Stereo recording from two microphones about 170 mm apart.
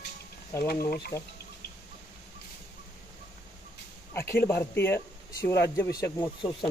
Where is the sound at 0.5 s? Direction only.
15° left (ahead or behind).